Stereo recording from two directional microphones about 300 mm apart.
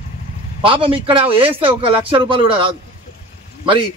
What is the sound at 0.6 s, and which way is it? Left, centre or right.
A man's voice, centre.